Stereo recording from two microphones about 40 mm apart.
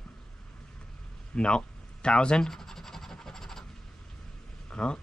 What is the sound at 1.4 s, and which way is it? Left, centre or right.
Speech, left.